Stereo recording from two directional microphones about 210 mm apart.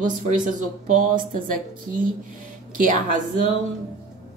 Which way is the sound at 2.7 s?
40° right (ahead or behind).